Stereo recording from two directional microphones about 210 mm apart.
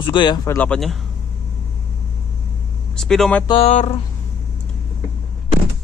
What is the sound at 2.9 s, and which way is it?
Speech, centre (ahead or behind).